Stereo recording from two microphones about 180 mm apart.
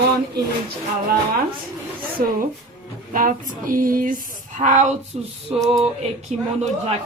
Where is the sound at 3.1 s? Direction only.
50° right (ahead or behind).